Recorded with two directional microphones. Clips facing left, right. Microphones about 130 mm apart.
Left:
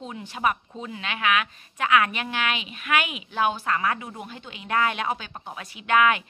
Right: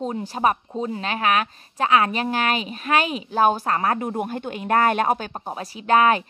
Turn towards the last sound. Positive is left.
turn(degrees=-35)  # may be behind; listen again after turning